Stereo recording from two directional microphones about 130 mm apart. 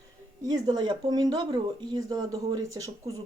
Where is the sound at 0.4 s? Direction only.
30° right (ahead or behind).